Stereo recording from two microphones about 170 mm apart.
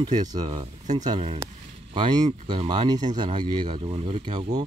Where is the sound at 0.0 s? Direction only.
25° right (ahead or behind).